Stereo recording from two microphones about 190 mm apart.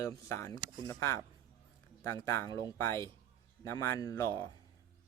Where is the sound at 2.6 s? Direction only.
15° left (ahead or behind).